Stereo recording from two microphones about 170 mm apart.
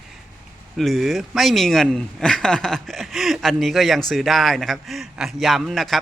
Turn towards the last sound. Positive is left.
turn(degrees=0)  # may be behind; listen again after turning